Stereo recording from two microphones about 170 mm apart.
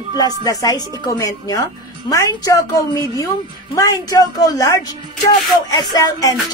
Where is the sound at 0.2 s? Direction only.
20° left (ahead or behind).